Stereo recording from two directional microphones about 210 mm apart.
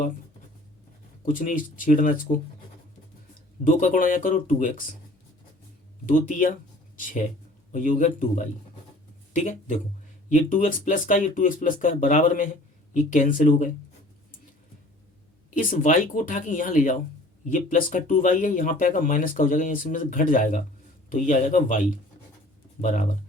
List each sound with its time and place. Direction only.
1.2 s speech: 40° left (ahead or behind)
3.6 s speech: 40° left (ahead or behind)
6.1 s speech: 40° left (ahead or behind)
15.4 s speech: 40° left (ahead or behind)